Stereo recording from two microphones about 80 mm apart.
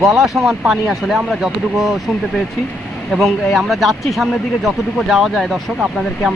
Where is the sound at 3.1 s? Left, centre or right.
Centre.